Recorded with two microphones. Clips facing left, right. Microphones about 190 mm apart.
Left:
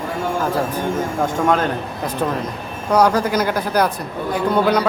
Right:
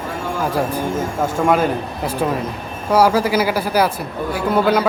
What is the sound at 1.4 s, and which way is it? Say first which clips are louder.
Speech: right 4 dB; 10° right (ahead or behind).